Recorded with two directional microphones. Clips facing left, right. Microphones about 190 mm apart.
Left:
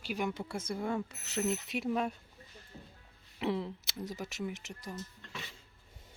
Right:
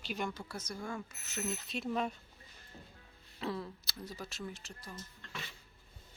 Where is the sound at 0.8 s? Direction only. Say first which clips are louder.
Left 7 dB; 25° left (ahead or behind).